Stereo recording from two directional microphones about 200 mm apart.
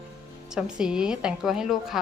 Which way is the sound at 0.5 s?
5° right (ahead or behind).